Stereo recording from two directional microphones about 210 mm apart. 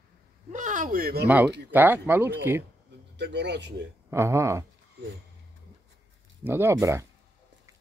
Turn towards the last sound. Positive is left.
turn(degrees=-15)  # may be behind; listen again after turning